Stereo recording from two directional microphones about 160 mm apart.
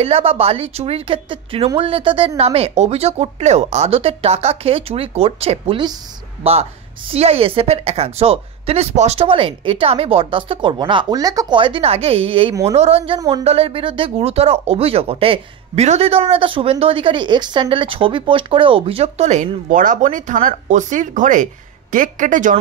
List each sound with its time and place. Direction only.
0.0 s a woman's voice: 40° right (ahead or behind); by 22.6 s 55° right (ahead or behind)